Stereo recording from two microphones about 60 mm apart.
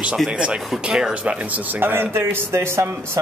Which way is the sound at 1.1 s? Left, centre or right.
Right.